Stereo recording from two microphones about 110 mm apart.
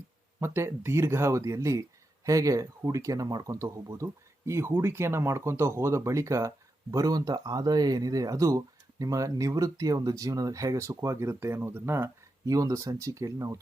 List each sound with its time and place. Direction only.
0.3 s speech: 25° right (ahead or behind)